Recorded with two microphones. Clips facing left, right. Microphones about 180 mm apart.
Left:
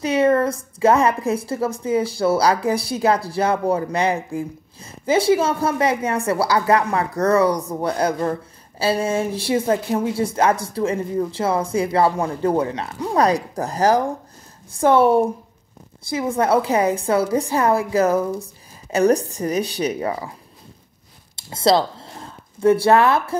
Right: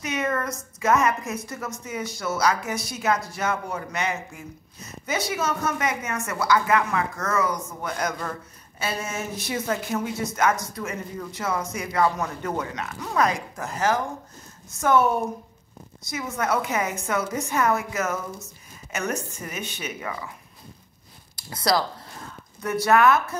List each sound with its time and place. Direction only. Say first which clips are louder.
0.0 s a woman's voice: left 10 dB; 30° left (ahead or behind)
21.4 s speech: left 7 dB; 25° left (ahead or behind)